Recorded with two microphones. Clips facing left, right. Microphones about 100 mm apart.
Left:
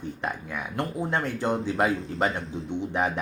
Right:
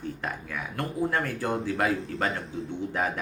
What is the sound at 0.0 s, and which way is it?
Speech, 20° left (ahead or behind).